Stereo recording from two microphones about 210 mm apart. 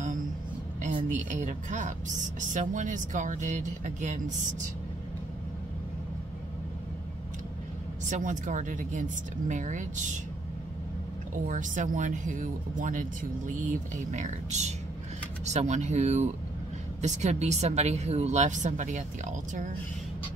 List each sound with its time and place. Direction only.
1.0 s speech: 35° right (ahead or behind)
8.1 s speech: 35° right (ahead or behind)
11.3 s speech: 40° right (ahead or behind)